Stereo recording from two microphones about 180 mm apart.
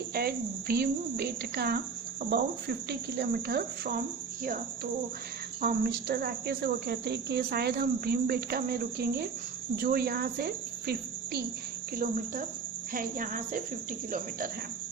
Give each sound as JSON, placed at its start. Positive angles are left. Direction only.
{"t": 0.1, "sound": "speech", "side_deg": -60}
{"t": 5.6, "sound": "speech", "side_deg": -60}
{"t": 11.9, "sound": "speech", "side_deg": -45}